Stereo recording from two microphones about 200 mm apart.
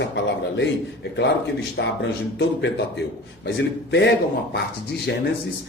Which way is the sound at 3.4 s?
60° left (ahead or behind).